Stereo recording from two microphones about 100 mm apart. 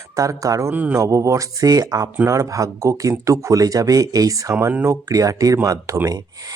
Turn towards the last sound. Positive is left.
turn(degrees=-35)  # may be behind; listen again after turning